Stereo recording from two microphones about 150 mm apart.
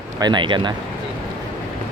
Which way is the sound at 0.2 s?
30° right (ahead or behind).